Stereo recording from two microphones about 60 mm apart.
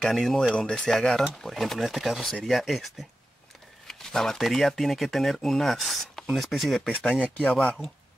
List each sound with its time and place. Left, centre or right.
0.0 s speech: centre
7.4 s speech: centre